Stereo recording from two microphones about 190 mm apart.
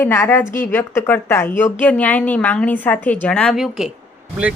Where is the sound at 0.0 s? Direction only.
10° left (ahead or behind).